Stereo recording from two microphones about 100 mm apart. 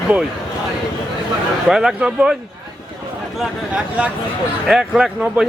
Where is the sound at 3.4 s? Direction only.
10° right (ahead or behind).